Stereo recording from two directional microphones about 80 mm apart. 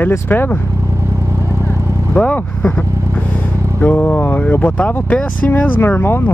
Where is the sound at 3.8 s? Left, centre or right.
Centre.